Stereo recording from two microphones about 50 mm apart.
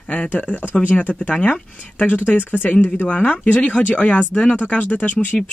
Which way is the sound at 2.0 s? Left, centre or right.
Left.